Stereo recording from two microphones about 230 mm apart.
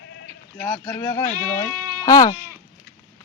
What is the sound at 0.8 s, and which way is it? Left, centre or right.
Speech, centre.